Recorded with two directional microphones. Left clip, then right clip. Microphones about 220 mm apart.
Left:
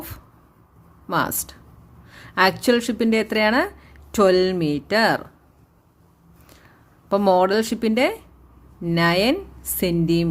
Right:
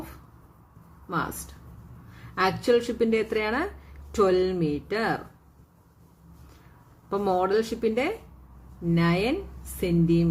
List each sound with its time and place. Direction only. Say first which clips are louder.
1.1 s speech: left 7 dB; 50° left (ahead or behind)
7.1 s speech: left 7 dB; 45° left (ahead or behind)